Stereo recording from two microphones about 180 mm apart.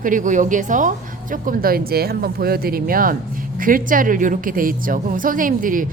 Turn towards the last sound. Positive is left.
turn(degrees=-50)  # may be behind; listen again after turning